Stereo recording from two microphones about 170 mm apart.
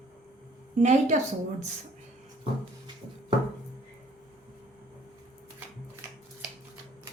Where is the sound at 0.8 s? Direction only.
45° right (ahead or behind).